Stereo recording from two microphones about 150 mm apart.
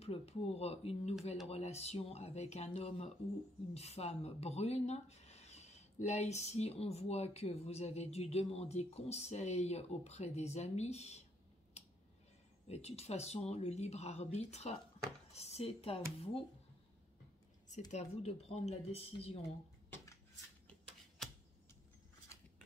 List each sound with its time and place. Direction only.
0.0 s speech: 45° left (ahead or behind)
12.6 s speech: 45° left (ahead or behind)
17.9 s speech: 45° left (ahead or behind)